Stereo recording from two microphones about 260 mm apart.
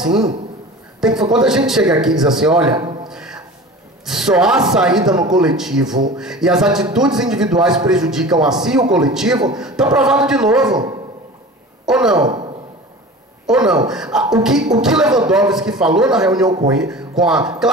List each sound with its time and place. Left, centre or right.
1.3 s speech: centre
3.1 s a sound: centre
4.0 s speech: centre
11.8 s speech: centre
12.2 s speech: centre
13.5 s speech: centre
16.4 s speech: centre
16.7 s speech: centre